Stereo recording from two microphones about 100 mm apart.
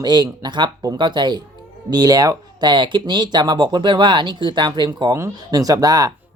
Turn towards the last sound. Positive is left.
turn(degrees=-35)  # may be behind; listen again after turning